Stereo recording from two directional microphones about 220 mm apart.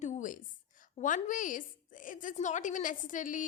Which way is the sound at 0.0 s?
35° left (ahead or behind).